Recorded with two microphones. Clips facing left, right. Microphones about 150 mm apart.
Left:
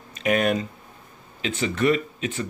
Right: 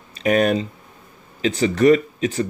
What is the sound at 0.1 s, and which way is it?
Speech, 35° right (ahead or behind).